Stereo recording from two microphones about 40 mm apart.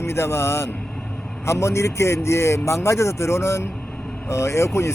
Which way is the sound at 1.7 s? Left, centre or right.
Left.